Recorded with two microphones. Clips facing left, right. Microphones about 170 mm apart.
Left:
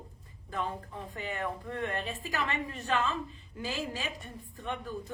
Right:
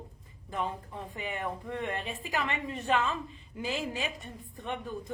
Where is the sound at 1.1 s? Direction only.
20° right (ahead or behind).